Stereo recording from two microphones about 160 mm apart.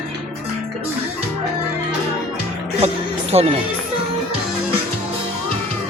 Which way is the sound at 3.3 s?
40° right (ahead or behind).